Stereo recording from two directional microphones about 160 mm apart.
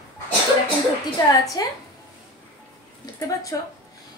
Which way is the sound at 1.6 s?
25° left (ahead or behind).